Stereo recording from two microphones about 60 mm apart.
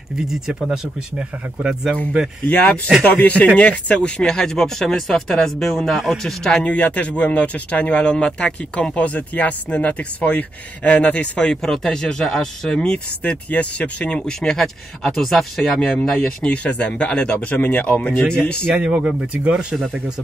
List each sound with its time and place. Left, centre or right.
0.3 s speech: centre
1.1 s speech: centre
2.4 s speech: left
6.6 s speech: left
11.5 s speech: centre
13.2 s speech: left
16.6 s speech: left
18.8 s speech: centre